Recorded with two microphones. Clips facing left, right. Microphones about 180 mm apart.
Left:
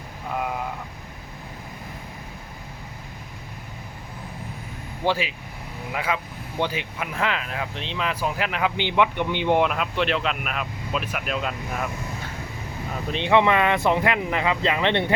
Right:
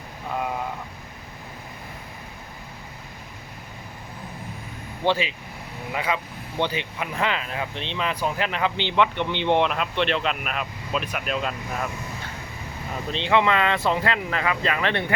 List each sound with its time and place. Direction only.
5.0 s speech: 5° left (ahead or behind)
13.1 s speech: 15° left (ahead or behind)